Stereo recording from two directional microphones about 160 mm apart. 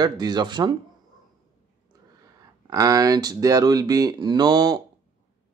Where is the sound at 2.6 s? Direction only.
20° right (ahead or behind).